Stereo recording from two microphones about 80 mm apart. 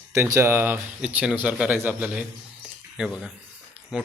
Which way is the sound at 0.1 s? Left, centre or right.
Right.